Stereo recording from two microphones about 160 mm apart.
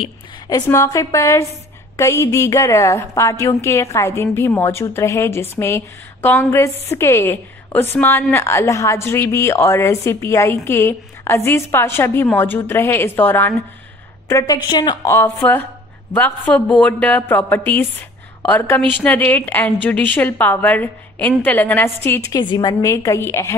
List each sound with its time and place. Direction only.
0.5 s a woman's voice: 20° left (ahead or behind)
14.3 s a woman's voice: 25° left (ahead or behind)
15.1 s a woman's voice: 10° left (ahead or behind)
22.3 s a woman's voice: 25° left (ahead or behind)